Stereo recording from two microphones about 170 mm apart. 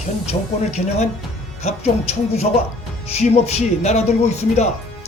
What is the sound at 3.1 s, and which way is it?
Speech, 40° left (ahead or behind).